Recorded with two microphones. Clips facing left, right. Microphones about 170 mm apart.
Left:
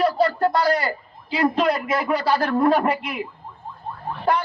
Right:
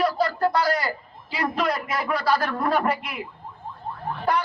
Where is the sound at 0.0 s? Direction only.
25° left (ahead or behind).